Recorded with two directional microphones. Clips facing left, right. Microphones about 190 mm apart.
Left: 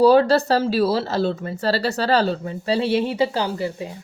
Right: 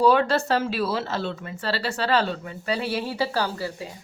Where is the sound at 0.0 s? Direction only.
35° left (ahead or behind).